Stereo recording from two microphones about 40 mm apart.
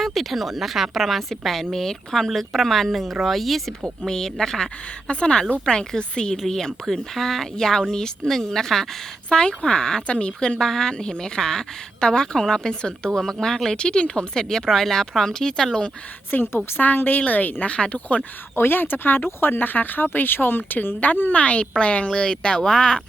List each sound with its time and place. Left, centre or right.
0.0 s a woman's voice: centre
3.7 s a woman's voice: centre
9.3 s speech: left
10.6 s a woman's voice: centre
16.3 s speech: left
16.8 s a woman's voice: left
17.7 s speech: left
18.5 s speech: left
21.3 s speech: left
22.1 s a woman's voice: left